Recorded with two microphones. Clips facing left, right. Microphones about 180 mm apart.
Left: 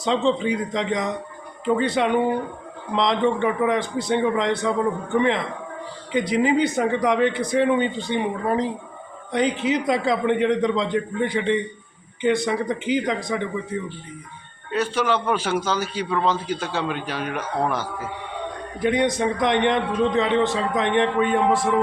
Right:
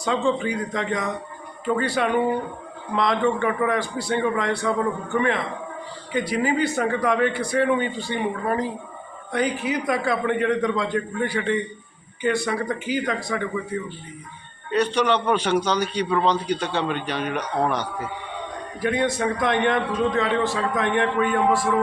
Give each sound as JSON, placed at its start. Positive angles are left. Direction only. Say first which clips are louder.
{"t": 0.0, "sound": "a man's voice", "louder": "left 2 dB", "side_deg": 20}
{"t": 14.7, "sound": "a man's voice", "louder": "right 2 dB", "side_deg": 5}
{"t": 18.8, "sound": "a man's voice", "louder": "left 2 dB", "side_deg": 20}